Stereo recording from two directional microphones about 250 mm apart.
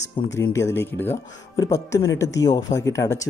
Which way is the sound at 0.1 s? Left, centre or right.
Centre.